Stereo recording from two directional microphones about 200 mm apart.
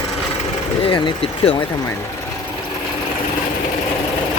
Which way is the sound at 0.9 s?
25° left (ahead or behind).